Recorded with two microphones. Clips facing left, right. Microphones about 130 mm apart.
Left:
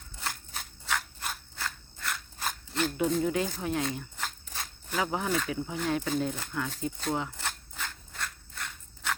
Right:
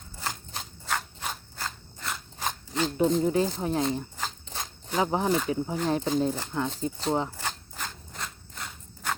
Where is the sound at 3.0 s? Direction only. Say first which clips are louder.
Right 5 dB; 30° right (ahead or behind).